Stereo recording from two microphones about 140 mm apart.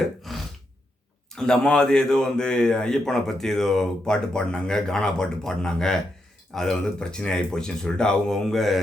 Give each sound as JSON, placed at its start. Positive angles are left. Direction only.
{"t": 0.3, "sound": "gasp", "side_deg": 0}
{"t": 1.4, "sound": "speech", "side_deg": 5}